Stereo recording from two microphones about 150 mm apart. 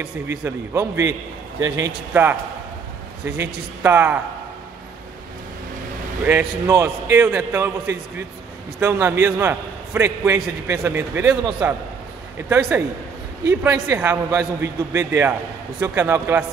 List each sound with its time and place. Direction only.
0.0 s a man's voice: 10° right (ahead or behind)
6.2 s a man's voice: 15° right (ahead or behind)
12.4 s a man's voice: 10° right (ahead or behind)